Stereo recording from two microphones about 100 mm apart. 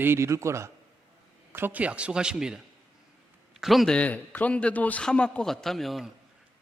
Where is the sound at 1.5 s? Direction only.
20° right (ahead or behind); by 4.0 s centre (ahead or behind).